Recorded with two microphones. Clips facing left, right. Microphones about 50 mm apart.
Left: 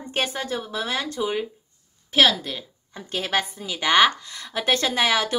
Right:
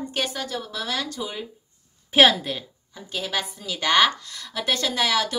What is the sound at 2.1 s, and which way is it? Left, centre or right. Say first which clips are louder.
Speech: right 2 dB; centre.